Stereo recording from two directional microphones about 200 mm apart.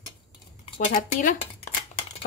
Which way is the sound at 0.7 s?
35° left (ahead or behind).